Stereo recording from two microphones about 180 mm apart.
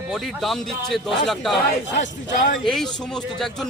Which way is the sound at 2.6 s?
5° left (ahead or behind).